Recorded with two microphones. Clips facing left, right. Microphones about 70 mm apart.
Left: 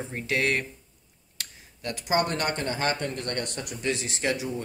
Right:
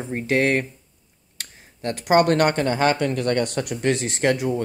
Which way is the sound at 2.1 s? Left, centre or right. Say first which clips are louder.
Right 9 dB; right.